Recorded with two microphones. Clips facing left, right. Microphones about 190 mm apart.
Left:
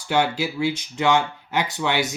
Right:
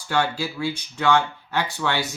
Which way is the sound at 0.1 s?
20° left (ahead or behind).